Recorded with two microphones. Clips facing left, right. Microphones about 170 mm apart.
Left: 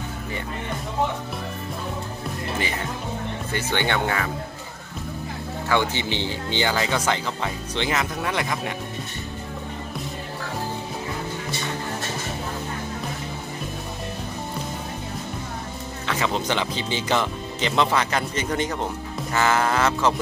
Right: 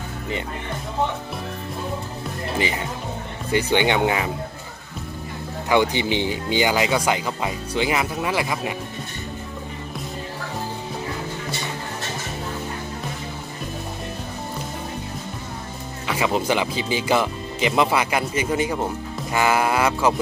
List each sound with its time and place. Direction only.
3.5 s speech: 15° right (ahead or behind)
5.7 s speech: 15° right (ahead or behind)
16.1 s speech: 10° right (ahead or behind)